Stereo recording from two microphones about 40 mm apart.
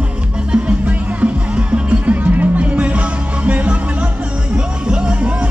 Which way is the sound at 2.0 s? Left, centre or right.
Right.